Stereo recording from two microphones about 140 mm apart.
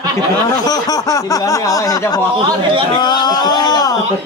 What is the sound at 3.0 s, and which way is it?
Speech, 30° left (ahead or behind).